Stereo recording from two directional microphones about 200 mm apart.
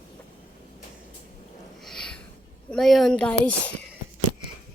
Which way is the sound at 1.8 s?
5° left (ahead or behind).